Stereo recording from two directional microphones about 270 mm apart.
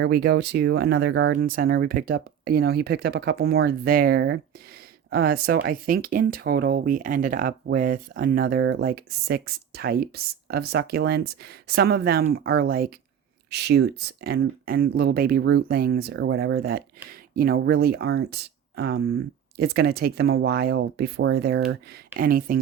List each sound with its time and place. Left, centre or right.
0.0 s speech: right